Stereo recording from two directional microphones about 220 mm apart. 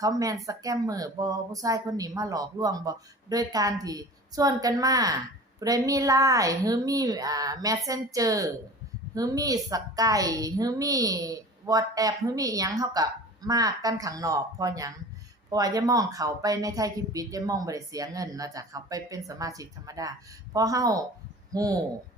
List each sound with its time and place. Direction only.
0.0 s speech: 15° right (ahead or behind)